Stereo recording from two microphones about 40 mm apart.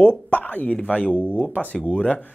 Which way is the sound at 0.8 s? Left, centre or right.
Left.